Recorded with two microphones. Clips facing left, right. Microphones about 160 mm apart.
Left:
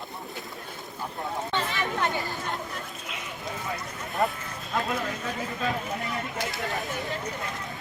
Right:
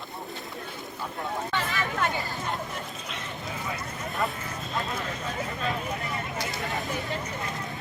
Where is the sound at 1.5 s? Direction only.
25° left (ahead or behind).